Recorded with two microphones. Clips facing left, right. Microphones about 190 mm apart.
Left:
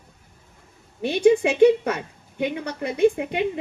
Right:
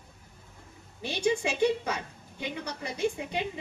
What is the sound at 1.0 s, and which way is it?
A woman's voice, 60° left (ahead or behind).